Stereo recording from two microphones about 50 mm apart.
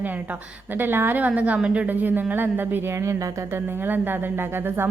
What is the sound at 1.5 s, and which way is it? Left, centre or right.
Speech, right.